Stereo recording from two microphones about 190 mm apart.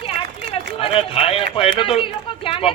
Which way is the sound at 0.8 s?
30° left (ahead or behind).